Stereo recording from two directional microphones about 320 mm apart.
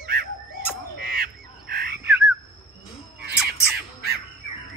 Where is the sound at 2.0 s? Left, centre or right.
Centre.